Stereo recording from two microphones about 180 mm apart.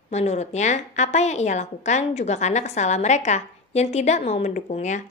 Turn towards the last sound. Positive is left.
turn(degrees=40)  # may be behind; listen again after turning